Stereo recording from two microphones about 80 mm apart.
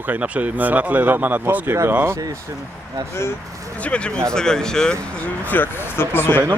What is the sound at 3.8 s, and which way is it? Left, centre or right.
Speech, centre.